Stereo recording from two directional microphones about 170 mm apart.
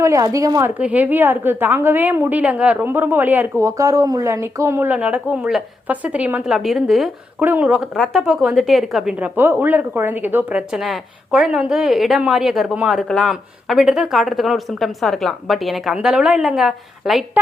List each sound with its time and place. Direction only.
0.0 s a woman's voice: 20° right (ahead or behind)
0.7 s a woman's voice: 10° right (ahead or behind)